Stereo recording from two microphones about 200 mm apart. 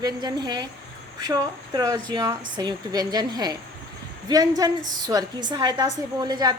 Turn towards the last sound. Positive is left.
turn(degrees=-20)  # may be behind; listen again after turning